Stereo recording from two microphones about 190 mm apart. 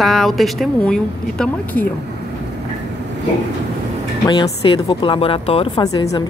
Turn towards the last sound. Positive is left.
turn(degrees=20)  # may be behind; listen again after turning